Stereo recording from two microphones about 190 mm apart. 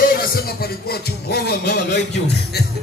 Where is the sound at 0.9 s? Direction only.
55° left (ahead or behind).